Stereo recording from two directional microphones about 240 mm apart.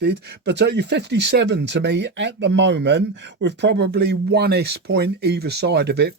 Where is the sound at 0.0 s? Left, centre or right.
Right.